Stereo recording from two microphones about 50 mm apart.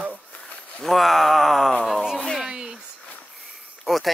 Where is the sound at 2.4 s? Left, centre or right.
Centre.